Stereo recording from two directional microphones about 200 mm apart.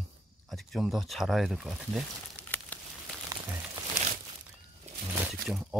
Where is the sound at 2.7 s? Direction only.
10° left (ahead or behind).